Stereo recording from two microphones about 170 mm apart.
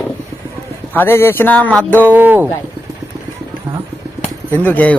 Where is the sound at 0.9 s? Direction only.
15° left (ahead or behind).